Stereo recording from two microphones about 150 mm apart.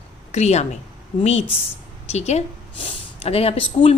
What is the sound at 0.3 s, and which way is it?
Speech, 45° left (ahead or behind).